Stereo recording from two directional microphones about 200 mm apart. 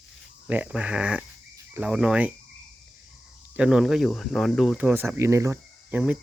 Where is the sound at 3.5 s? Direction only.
5° right (ahead or behind).